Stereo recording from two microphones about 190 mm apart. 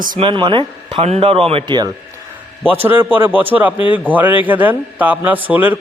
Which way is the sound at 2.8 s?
10° right (ahead or behind).